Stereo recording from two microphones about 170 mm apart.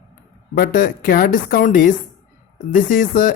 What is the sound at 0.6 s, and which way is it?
Speech, 55° left (ahead or behind).